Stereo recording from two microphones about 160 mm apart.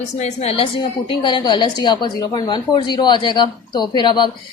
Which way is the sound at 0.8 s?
30° left (ahead or behind).